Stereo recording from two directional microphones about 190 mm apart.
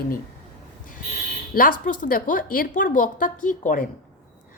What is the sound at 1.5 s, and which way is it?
A woman's voice, 45° left (ahead or behind).